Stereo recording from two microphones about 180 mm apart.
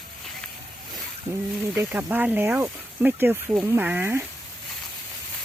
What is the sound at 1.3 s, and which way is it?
Speech, 20° right (ahead or behind).